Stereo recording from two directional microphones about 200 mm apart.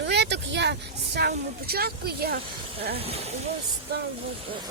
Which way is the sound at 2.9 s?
30° right (ahead or behind).